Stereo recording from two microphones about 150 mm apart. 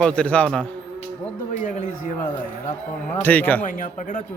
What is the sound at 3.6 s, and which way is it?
Speech, 60° left (ahead or behind).